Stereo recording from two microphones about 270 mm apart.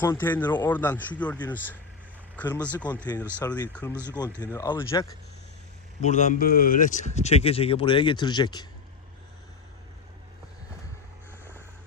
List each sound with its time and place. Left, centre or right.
0.0 s speech: centre
3.9 s speech: centre
4.4 s speech: centre
6.0 s speech: left